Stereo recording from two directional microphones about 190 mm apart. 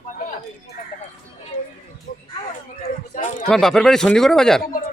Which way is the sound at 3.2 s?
45° left (ahead or behind).